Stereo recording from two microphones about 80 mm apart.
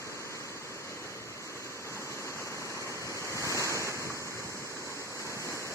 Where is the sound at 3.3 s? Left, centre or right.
Left.